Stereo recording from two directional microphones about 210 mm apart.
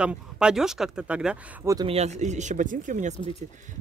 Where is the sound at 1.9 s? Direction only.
30° right (ahead or behind).